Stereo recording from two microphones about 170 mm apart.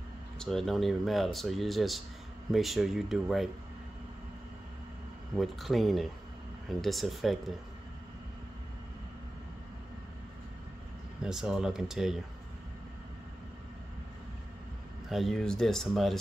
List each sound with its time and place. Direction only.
0.4 s speech: centre (ahead or behind)
5.3 s speech: centre (ahead or behind)
11.2 s speech: 5° right (ahead or behind)
15.0 s speech: centre (ahead or behind)